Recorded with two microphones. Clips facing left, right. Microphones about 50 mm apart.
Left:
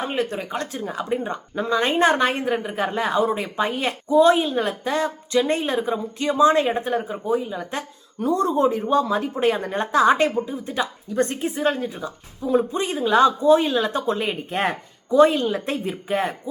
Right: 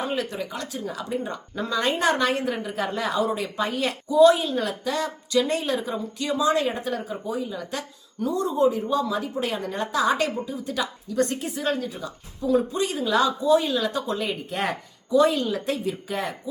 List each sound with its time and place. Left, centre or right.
0.0 s a woman's voice: left